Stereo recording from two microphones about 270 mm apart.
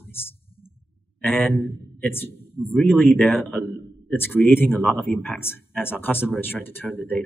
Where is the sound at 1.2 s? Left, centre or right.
Centre.